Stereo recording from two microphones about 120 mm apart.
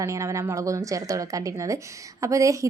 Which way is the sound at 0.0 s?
25° right (ahead or behind).